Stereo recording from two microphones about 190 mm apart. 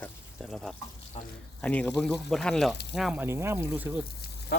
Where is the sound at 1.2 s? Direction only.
30° left (ahead or behind).